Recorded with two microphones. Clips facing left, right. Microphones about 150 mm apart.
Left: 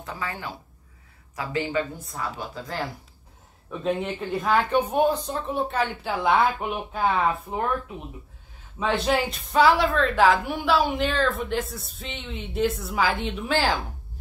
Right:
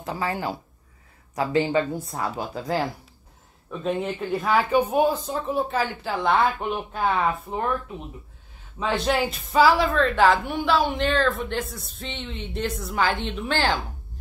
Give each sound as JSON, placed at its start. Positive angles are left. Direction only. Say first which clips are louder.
{"t": 0.0, "sound": "speech", "louder": "right 6 dB", "side_deg": -35}
{"t": 3.8, "sound": "a woman's voice", "louder": "even", "side_deg": 0}
{"t": 8.7, "sound": "a woman's voice", "louder": "even", "side_deg": 0}